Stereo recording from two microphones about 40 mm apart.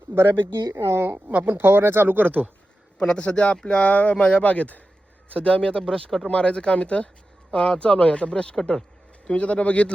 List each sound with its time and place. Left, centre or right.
0.1 s speech: right
1.3 s speech: right
1.5 s speech: right
2.0 s speech: right
3.0 s speech: left
8.5 s speech: centre
9.2 s speech: left